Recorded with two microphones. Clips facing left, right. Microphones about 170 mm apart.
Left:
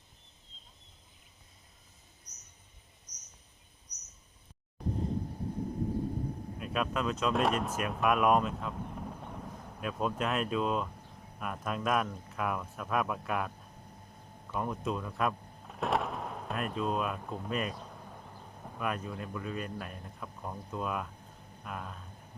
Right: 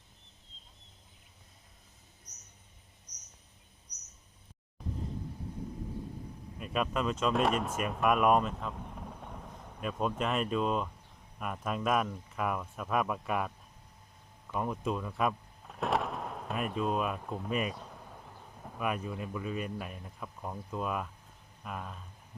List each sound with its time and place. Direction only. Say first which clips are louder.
5.0 s a sound: left 5 dB; 45° left (ahead or behind)
6.6 s speech: right 1 dB; centre (ahead or behind)
14.5 s speech: right 1 dB; centre (ahead or behind)